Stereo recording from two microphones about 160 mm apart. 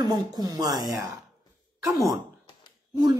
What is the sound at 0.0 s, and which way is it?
Speech, 25° right (ahead or behind).